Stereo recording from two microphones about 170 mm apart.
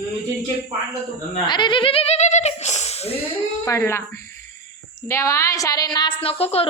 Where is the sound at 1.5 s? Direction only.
25° left (ahead or behind).